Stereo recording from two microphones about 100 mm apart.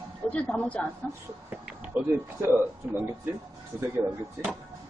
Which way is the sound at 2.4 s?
25° right (ahead or behind).